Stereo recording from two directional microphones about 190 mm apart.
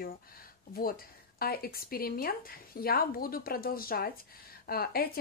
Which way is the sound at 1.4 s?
50° left (ahead or behind).